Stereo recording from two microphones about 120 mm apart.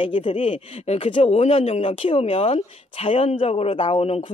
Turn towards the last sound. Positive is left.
turn(degrees=55)  # may be behind; listen again after turning